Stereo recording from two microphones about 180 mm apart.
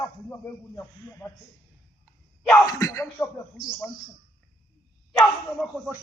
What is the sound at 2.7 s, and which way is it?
Speech, 15° left (ahead or behind).